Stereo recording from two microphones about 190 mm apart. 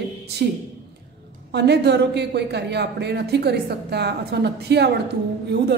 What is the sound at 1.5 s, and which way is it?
A woman's voice, 60° right (ahead or behind).